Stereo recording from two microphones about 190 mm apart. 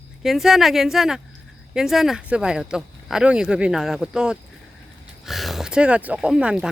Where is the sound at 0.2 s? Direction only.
Centre (ahead or behind).